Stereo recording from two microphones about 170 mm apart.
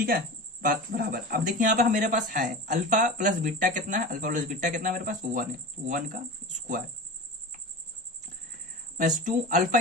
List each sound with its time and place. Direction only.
0.6 s speech: 55° right (ahead or behind)
9.0 s speech: 50° right (ahead or behind)